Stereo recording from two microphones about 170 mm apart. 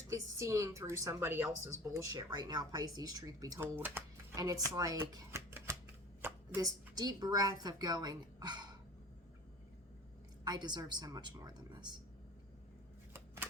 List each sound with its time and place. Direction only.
0.1 s a woman's voice: 20° right (ahead or behind)
10.4 s speech: 25° right (ahead or behind)
13.1 s shuffling cards: 15° right (ahead or behind)